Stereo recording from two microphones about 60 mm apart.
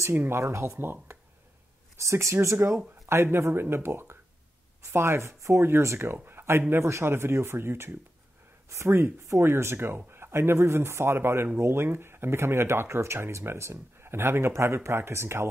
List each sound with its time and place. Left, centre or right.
0.1 s speech: right
0.4 s speech: right
2.0 s speech: right
3.1 s speech: right